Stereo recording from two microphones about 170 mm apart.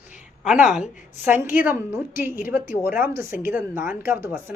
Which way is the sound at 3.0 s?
15° right (ahead or behind).